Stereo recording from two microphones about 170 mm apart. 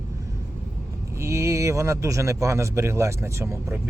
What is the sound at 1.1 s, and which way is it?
Speech, 15° right (ahead or behind).